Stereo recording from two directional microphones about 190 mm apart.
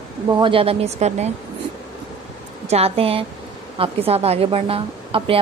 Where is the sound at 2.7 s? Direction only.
30° right (ahead or behind).